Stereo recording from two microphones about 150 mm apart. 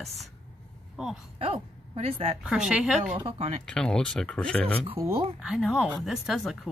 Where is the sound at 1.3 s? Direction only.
40° right (ahead or behind).